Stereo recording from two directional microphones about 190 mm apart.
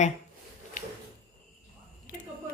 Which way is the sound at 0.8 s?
40° left (ahead or behind).